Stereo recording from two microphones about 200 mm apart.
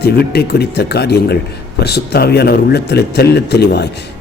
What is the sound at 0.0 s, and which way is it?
Speech, 55° left (ahead or behind).